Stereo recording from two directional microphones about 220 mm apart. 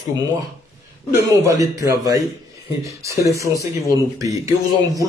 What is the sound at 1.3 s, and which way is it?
Speech, 15° right (ahead or behind).